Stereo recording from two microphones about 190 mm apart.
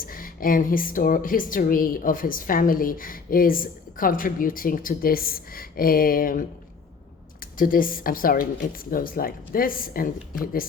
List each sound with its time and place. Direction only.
0.0 s a woman's voice: 50° left (ahead or behind)
7.6 s a woman's voice: 45° left (ahead or behind)